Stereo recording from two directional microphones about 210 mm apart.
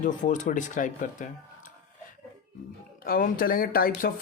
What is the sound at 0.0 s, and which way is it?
Speech, 35° left (ahead or behind).